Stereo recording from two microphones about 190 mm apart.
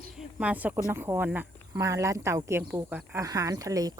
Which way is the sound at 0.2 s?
5° right (ahead or behind).